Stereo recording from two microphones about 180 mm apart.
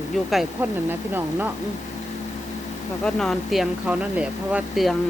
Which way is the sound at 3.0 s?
5° left (ahead or behind).